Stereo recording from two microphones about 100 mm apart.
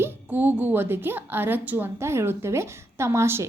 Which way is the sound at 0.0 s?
20° right (ahead or behind).